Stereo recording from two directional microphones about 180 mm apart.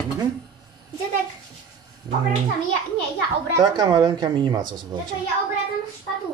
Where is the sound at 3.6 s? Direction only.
20° right (ahead or behind).